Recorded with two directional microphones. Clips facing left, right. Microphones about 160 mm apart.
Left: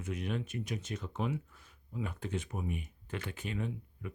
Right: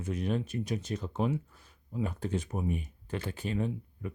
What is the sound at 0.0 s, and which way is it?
Speech, 35° right (ahead or behind).